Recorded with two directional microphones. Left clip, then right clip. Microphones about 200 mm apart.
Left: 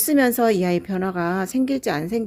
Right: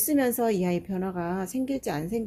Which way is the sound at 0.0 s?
35° left (ahead or behind).